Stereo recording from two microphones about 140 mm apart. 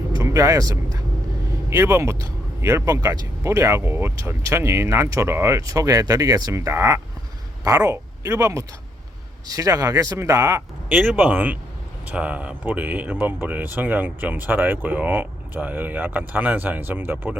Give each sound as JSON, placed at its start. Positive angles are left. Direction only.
{"t": 0.2, "sound": "speech", "side_deg": -20}
{"t": 8.2, "sound": "speech", "side_deg": -20}